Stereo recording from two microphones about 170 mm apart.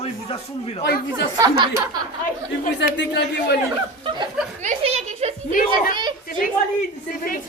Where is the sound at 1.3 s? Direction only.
25° right (ahead or behind).